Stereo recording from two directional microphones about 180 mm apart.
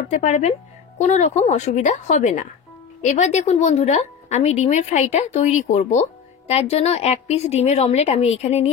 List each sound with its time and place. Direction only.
0.1 s a woman's voice: 40° left (ahead or behind)